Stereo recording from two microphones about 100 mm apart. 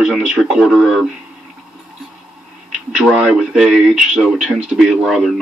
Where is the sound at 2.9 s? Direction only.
5° right (ahead or behind).